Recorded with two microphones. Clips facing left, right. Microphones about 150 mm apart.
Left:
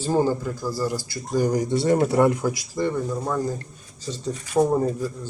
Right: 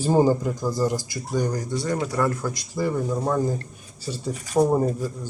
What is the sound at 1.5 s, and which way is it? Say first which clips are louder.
Speech: left 6 dB; 25° left (ahead or behind).